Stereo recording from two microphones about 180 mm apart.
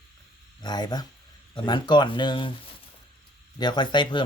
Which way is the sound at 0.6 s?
25° left (ahead or behind).